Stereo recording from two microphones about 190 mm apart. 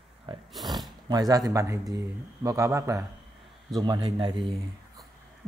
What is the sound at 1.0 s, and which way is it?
Speech, 20° right (ahead or behind).